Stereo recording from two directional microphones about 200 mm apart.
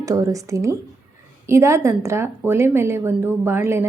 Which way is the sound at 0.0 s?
15° right (ahead or behind).